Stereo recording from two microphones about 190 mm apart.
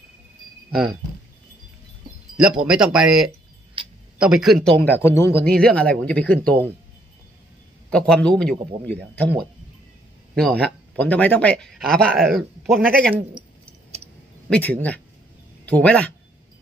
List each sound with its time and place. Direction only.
2.3 s speech: 5° right (ahead or behind)
7.9 s speech: 5° left (ahead or behind)
10.3 s speech: 5° left (ahead or behind)
13.9 s clicking: 35° right (ahead or behind)
14.5 s speech: 10° left (ahead or behind)